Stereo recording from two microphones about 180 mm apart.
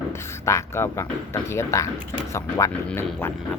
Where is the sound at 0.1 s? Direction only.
15° left (ahead or behind).